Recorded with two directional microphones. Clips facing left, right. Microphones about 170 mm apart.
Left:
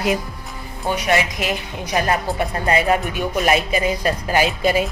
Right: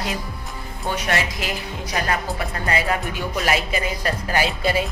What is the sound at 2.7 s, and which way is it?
Speech, 20° left (ahead or behind).